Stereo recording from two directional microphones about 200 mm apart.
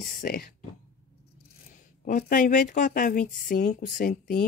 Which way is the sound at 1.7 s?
40° left (ahead or behind).